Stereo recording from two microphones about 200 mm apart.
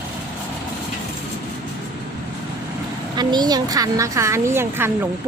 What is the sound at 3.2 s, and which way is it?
A woman's voice, 20° right (ahead or behind).